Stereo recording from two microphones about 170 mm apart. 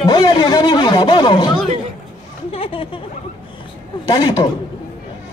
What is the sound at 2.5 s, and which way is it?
Speech, 35° left (ahead or behind).